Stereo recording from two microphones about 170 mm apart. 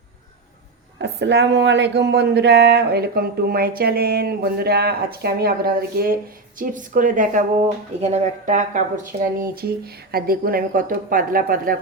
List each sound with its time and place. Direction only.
0.9 s speech: 90° right; by 6.1 s 60° right (ahead or behind)
6.6 s speech: 50° right (ahead or behind)
9.4 s speech: 65° right (ahead or behind)